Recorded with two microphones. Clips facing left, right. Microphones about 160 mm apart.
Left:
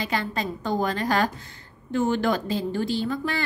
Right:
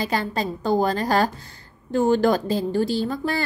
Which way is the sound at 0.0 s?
40° right (ahead or behind).